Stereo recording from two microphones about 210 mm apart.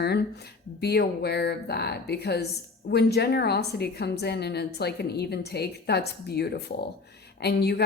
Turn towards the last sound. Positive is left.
turn(degrees=50)  # may be behind; listen again after turning